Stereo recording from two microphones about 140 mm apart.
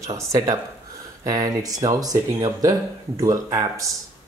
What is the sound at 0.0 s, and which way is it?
Speech, 20° right (ahead or behind).